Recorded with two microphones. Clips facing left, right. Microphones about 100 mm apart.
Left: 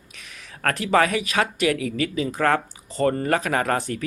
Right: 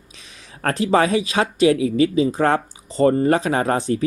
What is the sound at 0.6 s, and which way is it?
Speech, 25° right (ahead or behind).